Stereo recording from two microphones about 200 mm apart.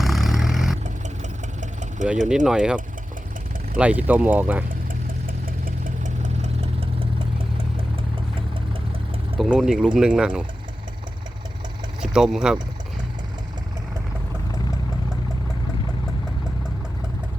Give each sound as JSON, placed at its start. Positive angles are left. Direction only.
{"t": 0.0, "sound": "vehicle", "side_deg": 0}
{"t": 0.9, "sound": "engine", "side_deg": -35}
{"t": 2.3, "sound": "speech", "side_deg": -5}
{"t": 3.8, "sound": "speech", "side_deg": -5}
{"t": 4.7, "sound": "engine", "side_deg": -45}
{"t": 9.4, "sound": "speech", "side_deg": 0}
{"t": 11.9, "sound": "speech", "side_deg": -5}